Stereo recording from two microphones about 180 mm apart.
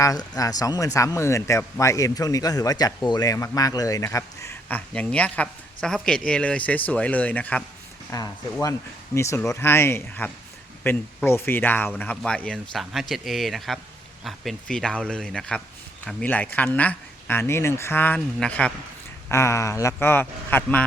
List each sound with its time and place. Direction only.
0.0 s a man's voice: 20° left (ahead or behind)